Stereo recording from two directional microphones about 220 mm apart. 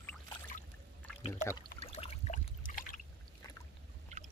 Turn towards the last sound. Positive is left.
turn(degrees=-30)  # may be behind; listen again after turning